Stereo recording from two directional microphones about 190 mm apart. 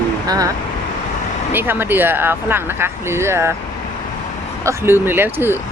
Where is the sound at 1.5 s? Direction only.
10° right (ahead or behind).